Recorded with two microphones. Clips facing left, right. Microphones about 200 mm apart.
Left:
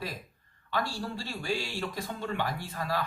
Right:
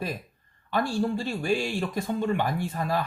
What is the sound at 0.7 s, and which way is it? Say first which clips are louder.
Speech: right 7 dB; 55° right (ahead or behind).